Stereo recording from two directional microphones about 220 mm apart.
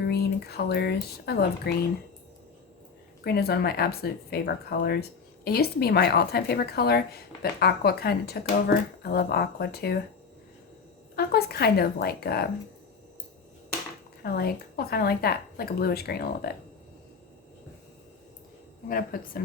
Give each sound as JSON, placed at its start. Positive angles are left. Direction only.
{"t": 0.0, "sound": "speech", "side_deg": 45}
{"t": 3.2, "sound": "speech", "side_deg": 45}
{"t": 11.1, "sound": "speech", "side_deg": 45}
{"t": 14.2, "sound": "speech", "side_deg": 45}
{"t": 18.9, "sound": "a woman's voice", "side_deg": 40}